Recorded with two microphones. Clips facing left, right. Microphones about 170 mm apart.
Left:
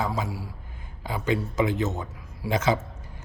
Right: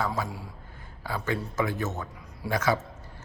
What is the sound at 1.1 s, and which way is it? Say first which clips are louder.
A man's voice: left 4 dB; 20° left (ahead or behind).